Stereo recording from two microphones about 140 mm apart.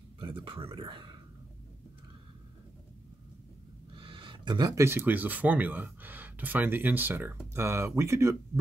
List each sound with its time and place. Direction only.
0.2 s speech: 35° right (ahead or behind)
3.9 s speech: 35° right (ahead or behind); by 8.4 s 20° right (ahead or behind)